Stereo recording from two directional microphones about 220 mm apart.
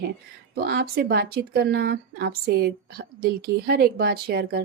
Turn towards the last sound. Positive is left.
turn(degrees=-45)  # may be behind; listen again after turning